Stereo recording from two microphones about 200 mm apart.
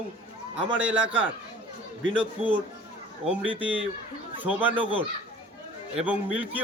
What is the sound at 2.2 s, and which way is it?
Speech, 25° right (ahead or behind).